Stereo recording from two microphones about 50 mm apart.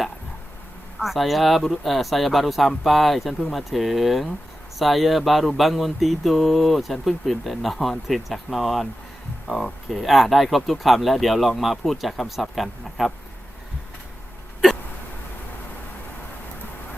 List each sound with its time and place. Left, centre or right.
0.9 s speech: centre